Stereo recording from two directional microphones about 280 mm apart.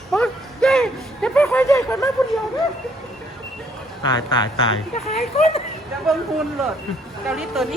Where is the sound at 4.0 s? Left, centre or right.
Centre.